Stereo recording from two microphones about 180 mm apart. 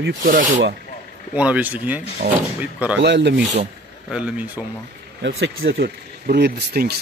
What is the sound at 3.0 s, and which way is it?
Speech, 75° right (ahead or behind).